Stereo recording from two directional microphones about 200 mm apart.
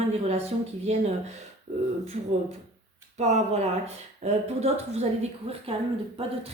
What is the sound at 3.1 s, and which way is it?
Speech, 35° right (ahead or behind).